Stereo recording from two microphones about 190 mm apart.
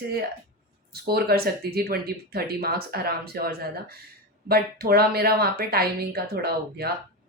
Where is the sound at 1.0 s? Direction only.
55° right (ahead or behind).